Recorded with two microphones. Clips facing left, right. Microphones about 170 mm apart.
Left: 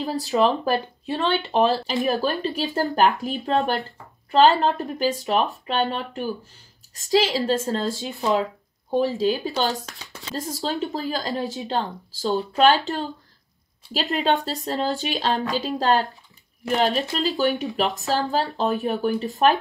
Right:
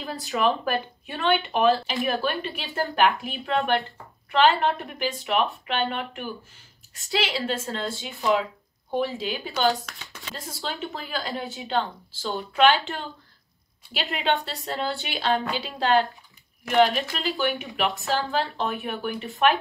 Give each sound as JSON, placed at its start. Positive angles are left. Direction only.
{"t": 0.7, "sound": "speech", "side_deg": 30}
{"t": 14.1, "sound": "speech", "side_deg": 40}